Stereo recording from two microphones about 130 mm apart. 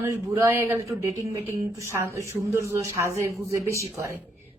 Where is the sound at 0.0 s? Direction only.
20° right (ahead or behind).